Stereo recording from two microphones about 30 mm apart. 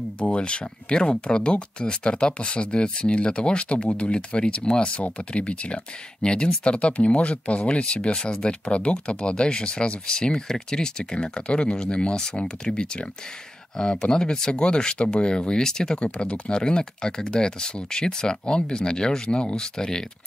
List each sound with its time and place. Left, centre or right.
0.2 s speech: left; by 14.5 s centre
14.5 s speech: left
16.2 s speech: left; by 20.1 s centre